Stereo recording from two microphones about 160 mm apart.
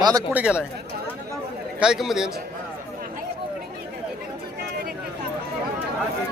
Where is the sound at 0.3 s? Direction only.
5° right (ahead or behind).